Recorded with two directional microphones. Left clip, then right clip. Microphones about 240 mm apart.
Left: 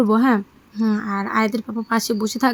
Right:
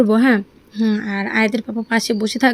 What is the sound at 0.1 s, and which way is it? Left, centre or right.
Speech, centre.